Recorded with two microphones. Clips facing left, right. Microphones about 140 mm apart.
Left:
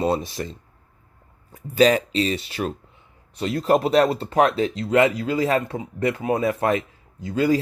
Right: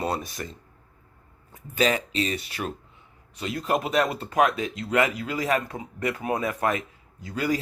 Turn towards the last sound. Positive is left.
turn(degrees=25)  # may be behind; listen again after turning